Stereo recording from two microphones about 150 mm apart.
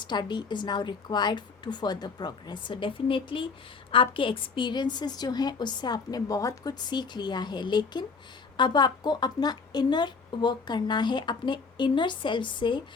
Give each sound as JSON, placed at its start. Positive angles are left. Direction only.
{"t": 0.0, "sound": "a woman's voice", "side_deg": 30}